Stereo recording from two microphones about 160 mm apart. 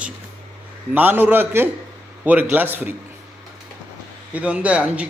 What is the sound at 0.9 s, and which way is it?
Speech, 10° right (ahead or behind).